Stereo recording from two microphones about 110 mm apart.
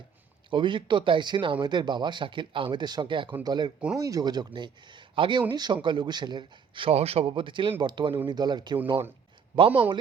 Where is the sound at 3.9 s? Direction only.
30° right (ahead or behind).